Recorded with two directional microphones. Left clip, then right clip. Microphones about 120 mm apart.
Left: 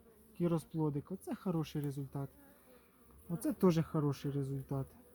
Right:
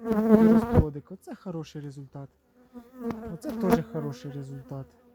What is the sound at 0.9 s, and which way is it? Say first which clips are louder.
Speech: right 2 dB; 40° right (ahead or behind).